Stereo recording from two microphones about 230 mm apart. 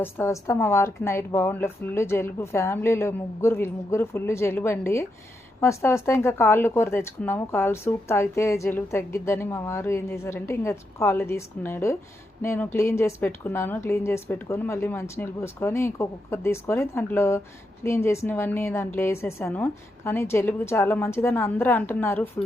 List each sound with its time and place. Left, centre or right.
0.0 s speech: centre